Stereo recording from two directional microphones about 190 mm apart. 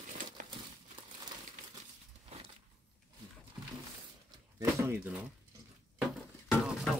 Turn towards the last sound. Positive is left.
turn(degrees=0)  # may be behind; listen again after turning